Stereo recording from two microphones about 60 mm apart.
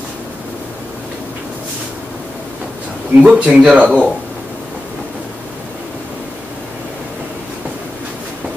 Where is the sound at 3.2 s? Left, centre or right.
Centre.